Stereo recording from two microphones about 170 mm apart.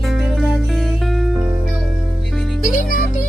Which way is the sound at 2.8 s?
50° left (ahead or behind).